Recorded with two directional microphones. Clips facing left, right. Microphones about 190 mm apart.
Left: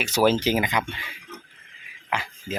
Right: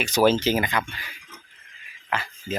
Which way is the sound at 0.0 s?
10° left (ahead or behind).